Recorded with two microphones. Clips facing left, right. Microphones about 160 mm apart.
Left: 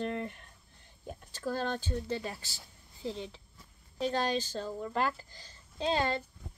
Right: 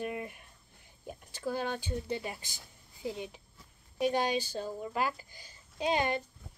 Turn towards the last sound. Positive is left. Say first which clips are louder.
# even
turn(degrees=-15)  # may be behind; listen again after turning